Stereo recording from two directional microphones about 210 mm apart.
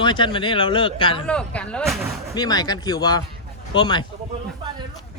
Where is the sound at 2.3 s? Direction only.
20° left (ahead or behind).